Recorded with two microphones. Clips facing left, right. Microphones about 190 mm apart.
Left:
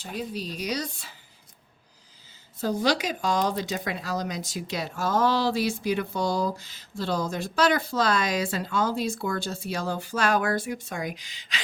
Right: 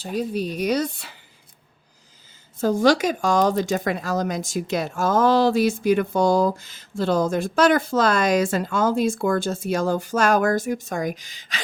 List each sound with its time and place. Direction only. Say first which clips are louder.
0.0 s speech: right 8 dB; 40° right (ahead or behind); by 1.1 s 60° right (ahead or behind)
2.6 s speech: right 7 dB; 50° right (ahead or behind)